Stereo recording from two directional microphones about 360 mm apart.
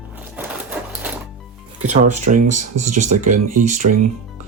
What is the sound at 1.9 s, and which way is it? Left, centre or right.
Speech, right.